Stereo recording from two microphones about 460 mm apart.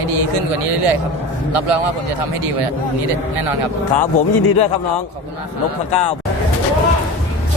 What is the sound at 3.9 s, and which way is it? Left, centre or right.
Speech, left.